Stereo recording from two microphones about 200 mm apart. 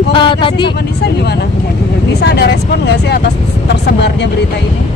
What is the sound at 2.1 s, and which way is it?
Speech, 55° left (ahead or behind).